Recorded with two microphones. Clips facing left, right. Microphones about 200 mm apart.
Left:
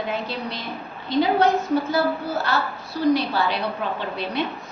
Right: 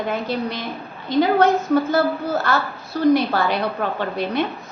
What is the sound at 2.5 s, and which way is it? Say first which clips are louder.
A woman's voice: right 3 dB; 50° right (ahead or behind).